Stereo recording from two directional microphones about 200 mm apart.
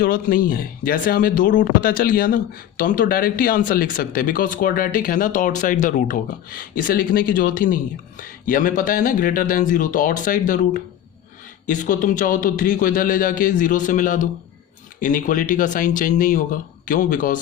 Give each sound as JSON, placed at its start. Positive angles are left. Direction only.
{"t": 0.0, "sound": "a man's voice", "side_deg": 45}